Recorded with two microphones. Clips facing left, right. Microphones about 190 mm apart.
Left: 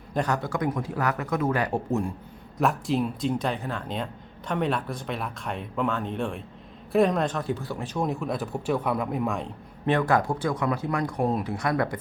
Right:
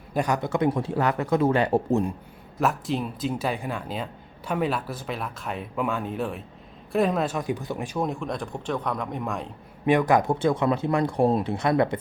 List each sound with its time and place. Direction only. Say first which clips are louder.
0.1 s speech: right 2 dB; 10° right (ahead or behind); by 2.0 s 30° right (ahead or behind)
2.6 s speech: left 1 dB; centre (ahead or behind); by 7.9 s 15° right (ahead or behind)
7.9 s speech: left 1 dB; centre (ahead or behind)
9.8 s speech: right 3 dB; 15° right (ahead or behind)